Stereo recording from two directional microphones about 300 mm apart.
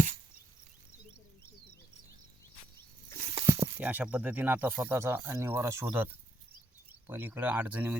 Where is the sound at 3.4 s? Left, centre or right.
Centre.